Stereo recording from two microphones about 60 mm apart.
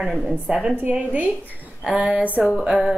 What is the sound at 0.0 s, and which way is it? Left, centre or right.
Speech, centre.